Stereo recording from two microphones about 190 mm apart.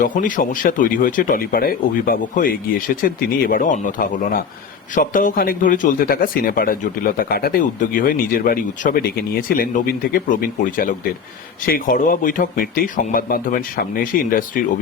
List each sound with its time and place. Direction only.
0.0 s a man's voice: 45° left (ahead or behind)